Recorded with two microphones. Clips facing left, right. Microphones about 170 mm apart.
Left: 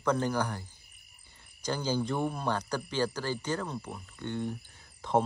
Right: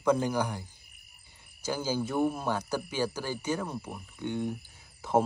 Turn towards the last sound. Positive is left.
turn(degrees=-5)  # may be behind; listen again after turning